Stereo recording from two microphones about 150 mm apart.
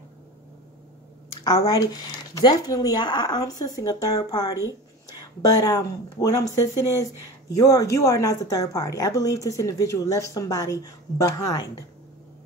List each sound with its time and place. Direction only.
1.3 s a woman's voice: 25° left (ahead or behind)